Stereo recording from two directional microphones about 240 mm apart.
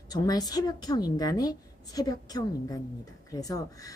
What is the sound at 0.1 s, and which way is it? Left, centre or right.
Speech, centre.